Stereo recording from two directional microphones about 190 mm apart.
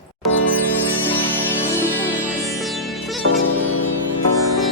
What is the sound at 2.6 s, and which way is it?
Music, centre (ahead or behind).